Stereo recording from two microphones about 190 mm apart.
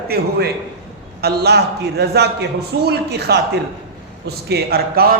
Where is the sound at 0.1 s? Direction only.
55° right (ahead or behind).